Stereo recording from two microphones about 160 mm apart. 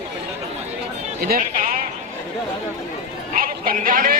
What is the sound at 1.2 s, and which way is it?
Speech, 65° right (ahead or behind).